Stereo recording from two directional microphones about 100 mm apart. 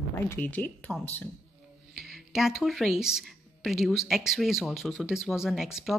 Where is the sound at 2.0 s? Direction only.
5° right (ahead or behind).